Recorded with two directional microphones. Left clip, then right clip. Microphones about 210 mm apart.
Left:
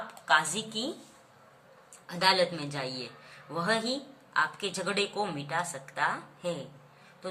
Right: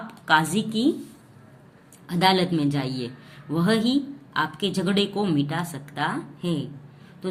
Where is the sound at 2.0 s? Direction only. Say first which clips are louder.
Right 4 dB; 25° right (ahead or behind).